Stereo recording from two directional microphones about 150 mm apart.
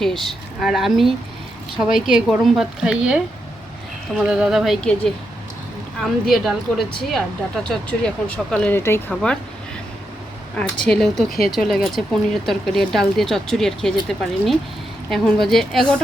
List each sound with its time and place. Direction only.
0.0 s speech: centre (ahead or behind)
4.2 s speech: 5° right (ahead or behind); by 9.1 s 15° left (ahead or behind)
10.6 s speech: 5° left (ahead or behind)